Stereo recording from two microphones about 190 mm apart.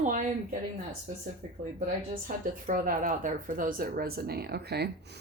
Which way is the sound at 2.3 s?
45° right (ahead or behind).